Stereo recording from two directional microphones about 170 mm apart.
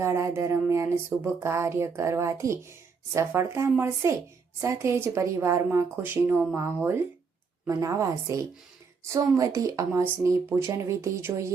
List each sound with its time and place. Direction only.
0.0 s a woman's voice: 15° right (ahead or behind)